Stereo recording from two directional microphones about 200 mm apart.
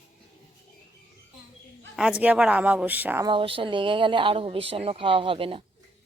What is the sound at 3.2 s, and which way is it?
Speech, 25° right (ahead or behind).